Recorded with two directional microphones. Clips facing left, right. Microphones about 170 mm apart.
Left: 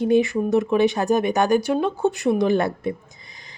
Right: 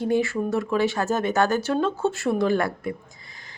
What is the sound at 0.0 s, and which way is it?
A woman's voice, 20° left (ahead or behind).